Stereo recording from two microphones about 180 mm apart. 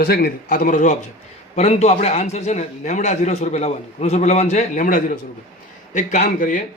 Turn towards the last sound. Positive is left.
turn(degrees=45)  # may be behind; listen again after turning